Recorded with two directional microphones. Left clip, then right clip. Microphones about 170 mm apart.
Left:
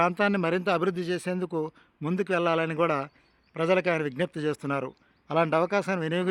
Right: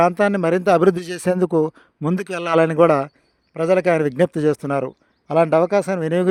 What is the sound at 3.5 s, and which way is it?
A man's voice, 30° right (ahead or behind).